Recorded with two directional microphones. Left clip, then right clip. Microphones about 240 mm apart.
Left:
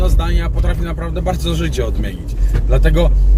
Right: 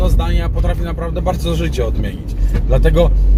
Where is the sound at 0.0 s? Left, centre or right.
Centre.